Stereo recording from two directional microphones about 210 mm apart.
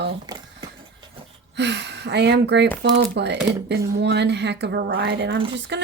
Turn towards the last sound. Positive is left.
turn(degrees=-55)  # may be behind; listen again after turning